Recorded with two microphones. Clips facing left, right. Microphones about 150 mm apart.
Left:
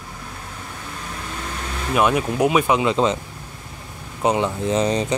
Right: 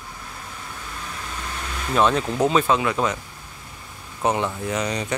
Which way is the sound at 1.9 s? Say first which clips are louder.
Left 1 dB; 10° left (ahead or behind).